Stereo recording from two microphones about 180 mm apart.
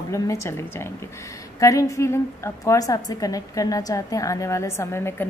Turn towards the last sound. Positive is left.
turn(degrees=15)  # may be behind; listen again after turning